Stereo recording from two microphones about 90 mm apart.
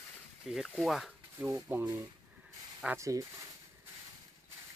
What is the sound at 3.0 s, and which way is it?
Speech, 40° right (ahead or behind).